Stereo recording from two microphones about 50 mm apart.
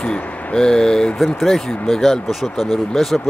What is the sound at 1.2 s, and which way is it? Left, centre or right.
Speech, centre.